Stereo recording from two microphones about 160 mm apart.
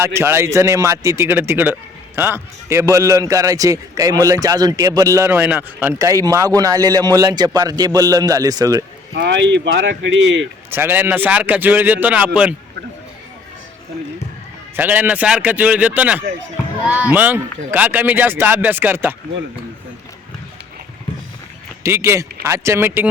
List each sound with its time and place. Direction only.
0.0 s a man's voice: 15° right (ahead or behind)
9.1 s speech: 90° right
10.7 s a man's voice: 15° right (ahead or behind)
14.8 s a man's voice: 10° right (ahead or behind)
21.8 s a man's voice: 15° right (ahead or behind)